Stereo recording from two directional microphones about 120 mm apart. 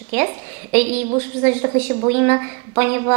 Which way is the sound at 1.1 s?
25° right (ahead or behind).